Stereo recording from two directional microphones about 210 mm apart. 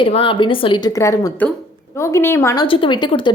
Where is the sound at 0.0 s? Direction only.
25° left (ahead or behind).